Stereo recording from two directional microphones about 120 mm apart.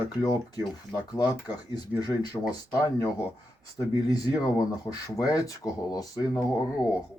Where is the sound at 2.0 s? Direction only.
30° left (ahead or behind).